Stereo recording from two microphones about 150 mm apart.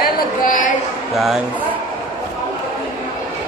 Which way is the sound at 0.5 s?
60° left (ahead or behind).